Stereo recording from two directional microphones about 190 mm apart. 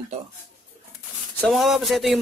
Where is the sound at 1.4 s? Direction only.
Centre (ahead or behind).